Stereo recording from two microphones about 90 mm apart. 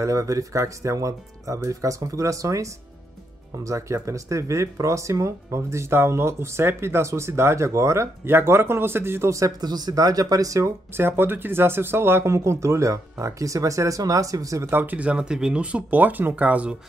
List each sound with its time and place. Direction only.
0.0 s speech: 35° right (ahead or behind)
14.7 s speech: 20° right (ahead or behind)